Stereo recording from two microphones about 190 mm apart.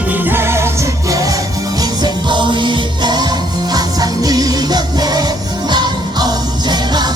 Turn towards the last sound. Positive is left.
turn(degrees=-20)  # may be behind; listen again after turning